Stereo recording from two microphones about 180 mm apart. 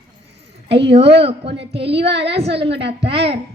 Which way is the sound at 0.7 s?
30° right (ahead or behind).